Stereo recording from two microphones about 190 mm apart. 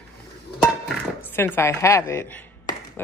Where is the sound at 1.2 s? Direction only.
10° left (ahead or behind).